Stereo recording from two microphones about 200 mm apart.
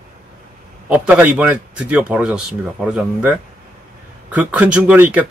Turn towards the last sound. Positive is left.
turn(degrees=-10)  # may be behind; listen again after turning